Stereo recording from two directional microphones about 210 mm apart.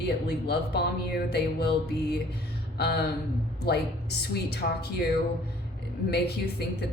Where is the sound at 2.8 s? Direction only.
50° left (ahead or behind).